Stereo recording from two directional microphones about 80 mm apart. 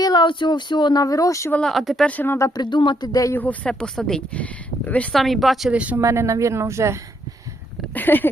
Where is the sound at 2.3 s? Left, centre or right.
Left.